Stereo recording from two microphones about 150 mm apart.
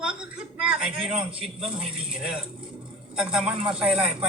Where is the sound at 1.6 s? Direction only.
35° right (ahead or behind).